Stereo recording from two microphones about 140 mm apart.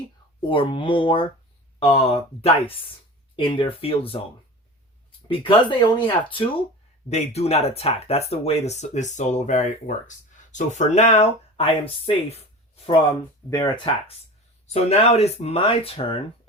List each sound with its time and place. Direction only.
0.4 s speech: 40° left (ahead or behind)
5.3 s speech: 35° left (ahead or behind)
7.1 s speech: 50° left (ahead or behind)
14.7 s speech: 50° left (ahead or behind)